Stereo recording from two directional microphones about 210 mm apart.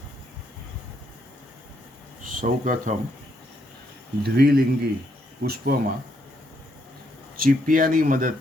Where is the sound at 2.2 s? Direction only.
40° right (ahead or behind).